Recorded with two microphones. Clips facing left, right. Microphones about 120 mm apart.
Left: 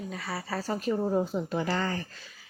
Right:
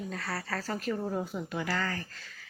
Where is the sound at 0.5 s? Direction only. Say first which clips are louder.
Left 5 dB; 20° left (ahead or behind).